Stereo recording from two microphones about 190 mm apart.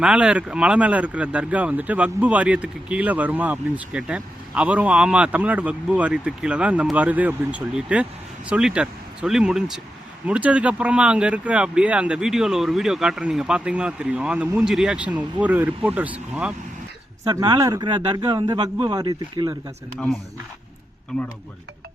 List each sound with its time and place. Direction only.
0.0 s speech: 5° right (ahead or behind)
17.2 s speech: 20° right (ahead or behind)